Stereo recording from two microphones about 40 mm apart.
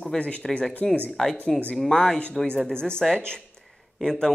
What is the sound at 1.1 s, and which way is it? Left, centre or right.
Speech, centre.